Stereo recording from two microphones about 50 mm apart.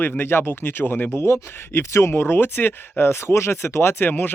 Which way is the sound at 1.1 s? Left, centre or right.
Left.